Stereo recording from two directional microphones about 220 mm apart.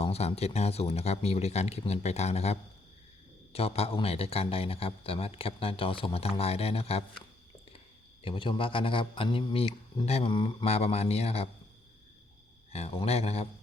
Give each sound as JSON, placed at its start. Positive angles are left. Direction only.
{"t": 0.0, "sound": "a man's voice", "side_deg": 30}
{"t": 8.2, "sound": "a man's voice", "side_deg": 25}
{"t": 12.7, "sound": "a man's voice", "side_deg": 25}